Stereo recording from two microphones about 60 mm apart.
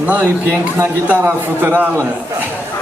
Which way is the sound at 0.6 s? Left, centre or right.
Right.